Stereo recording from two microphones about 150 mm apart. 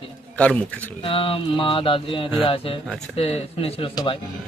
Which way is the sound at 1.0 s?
35° left (ahead or behind).